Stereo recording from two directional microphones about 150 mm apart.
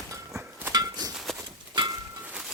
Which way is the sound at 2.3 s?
5° right (ahead or behind).